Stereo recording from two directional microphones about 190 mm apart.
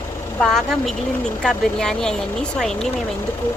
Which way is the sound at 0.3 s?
Centre (ahead or behind).